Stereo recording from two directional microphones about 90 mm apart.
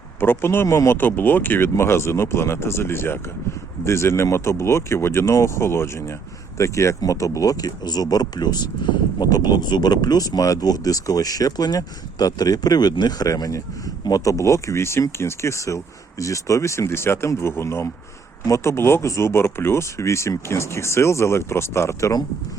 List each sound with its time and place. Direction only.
0.2 s speech: 25° left (ahead or behind)